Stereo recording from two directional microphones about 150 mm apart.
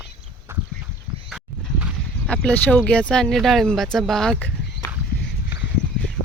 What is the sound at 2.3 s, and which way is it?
Speech, 5° left (ahead or behind).